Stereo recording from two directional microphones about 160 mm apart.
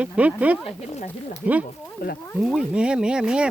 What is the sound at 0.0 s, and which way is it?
Speech, 10° right (ahead or behind).